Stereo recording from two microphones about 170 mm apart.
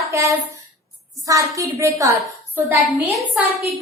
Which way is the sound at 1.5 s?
20° right (ahead or behind).